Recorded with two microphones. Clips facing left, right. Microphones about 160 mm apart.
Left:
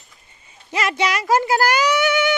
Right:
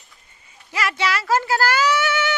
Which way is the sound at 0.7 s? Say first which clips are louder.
Left 2 dB; 20° left (ahead or behind).